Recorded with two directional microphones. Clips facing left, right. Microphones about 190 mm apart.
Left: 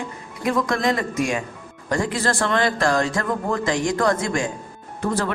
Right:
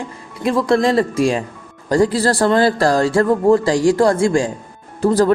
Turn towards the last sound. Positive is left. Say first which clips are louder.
# right 9 dB
turn(degrees=-35)  # may be behind; listen again after turning